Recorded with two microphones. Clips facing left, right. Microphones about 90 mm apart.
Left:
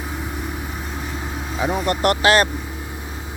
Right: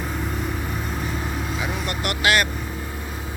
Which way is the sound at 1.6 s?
40° left (ahead or behind).